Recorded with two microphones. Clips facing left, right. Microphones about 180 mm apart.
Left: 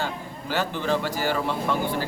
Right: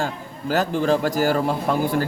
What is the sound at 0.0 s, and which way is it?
A man's voice, 40° right (ahead or behind).